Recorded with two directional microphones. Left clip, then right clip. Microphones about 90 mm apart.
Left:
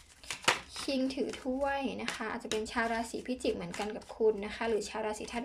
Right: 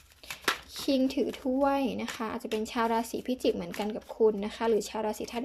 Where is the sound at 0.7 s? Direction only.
40° right (ahead or behind).